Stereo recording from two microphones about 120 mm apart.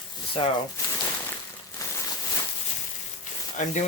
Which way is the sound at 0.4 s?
50° left (ahead or behind).